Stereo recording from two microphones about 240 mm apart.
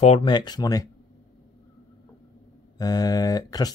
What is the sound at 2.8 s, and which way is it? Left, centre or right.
Speech, centre.